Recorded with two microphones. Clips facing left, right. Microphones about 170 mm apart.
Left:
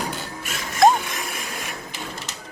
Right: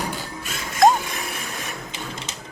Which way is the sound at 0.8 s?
Centre (ahead or behind).